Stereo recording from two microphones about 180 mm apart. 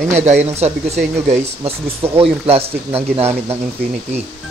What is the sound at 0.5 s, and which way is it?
Speech, 35° right (ahead or behind).